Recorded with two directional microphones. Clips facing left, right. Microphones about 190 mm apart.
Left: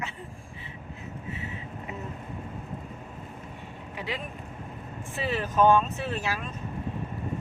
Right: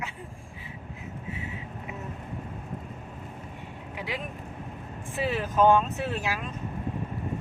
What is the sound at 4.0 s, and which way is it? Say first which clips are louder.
Speech: even; 10° right (ahead or behind).